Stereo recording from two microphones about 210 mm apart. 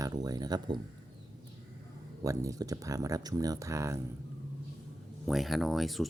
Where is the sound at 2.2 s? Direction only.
15° right (ahead or behind).